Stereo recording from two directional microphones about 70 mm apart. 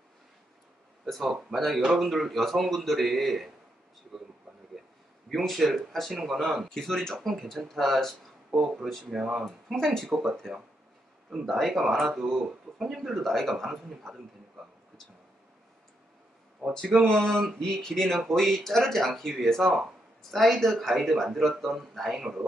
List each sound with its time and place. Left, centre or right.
1.0 s speech: centre
5.3 s speech: centre
8.5 s speech: centre
9.4 s speech: centre
11.4 s speech: centre
16.6 s speech: right
17.0 s speech: centre